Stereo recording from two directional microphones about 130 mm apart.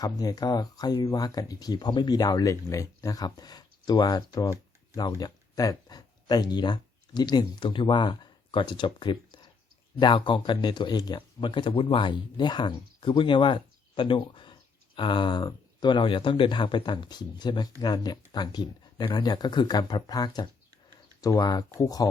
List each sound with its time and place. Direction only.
0.0 s speech: 30° left (ahead or behind)